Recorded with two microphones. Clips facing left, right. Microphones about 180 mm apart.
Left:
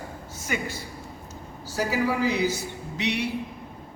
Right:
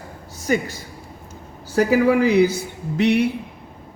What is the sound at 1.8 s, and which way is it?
A man's voice, 55° right (ahead or behind).